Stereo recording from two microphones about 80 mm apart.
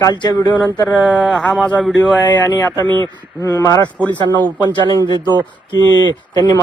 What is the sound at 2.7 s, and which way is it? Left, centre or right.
Speech, right.